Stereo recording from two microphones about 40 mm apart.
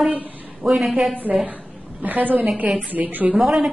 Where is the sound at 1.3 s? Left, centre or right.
Right.